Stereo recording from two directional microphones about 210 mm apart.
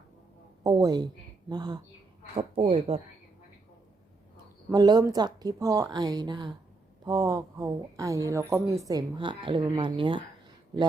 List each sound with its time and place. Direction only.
0.6 s speech: 20° right (ahead or behind)
4.7 s speech: 20° right (ahead or behind)